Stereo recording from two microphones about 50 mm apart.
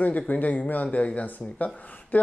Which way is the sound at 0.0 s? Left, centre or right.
Left.